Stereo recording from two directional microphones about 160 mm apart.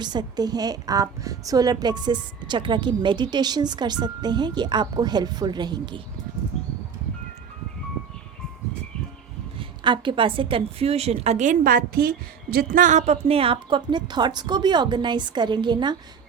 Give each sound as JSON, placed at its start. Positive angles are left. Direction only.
{"t": 0.0, "sound": "a woman's voice", "side_deg": -25}
{"t": 9.6, "sound": "a woman's voice", "side_deg": -30}